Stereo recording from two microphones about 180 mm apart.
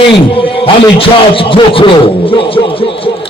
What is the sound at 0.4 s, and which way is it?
A man's voice, 30° left (ahead or behind).